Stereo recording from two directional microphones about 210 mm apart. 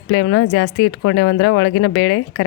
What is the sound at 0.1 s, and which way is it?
Speech, 60° left (ahead or behind).